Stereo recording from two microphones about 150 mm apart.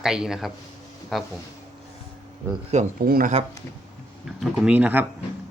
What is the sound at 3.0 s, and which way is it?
Speech, 75° right (ahead or behind).